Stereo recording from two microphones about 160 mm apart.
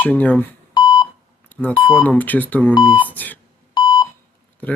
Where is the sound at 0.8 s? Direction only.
25° left (ahead or behind).